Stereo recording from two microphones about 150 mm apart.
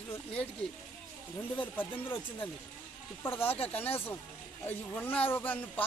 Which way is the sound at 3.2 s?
15° left (ahead or behind).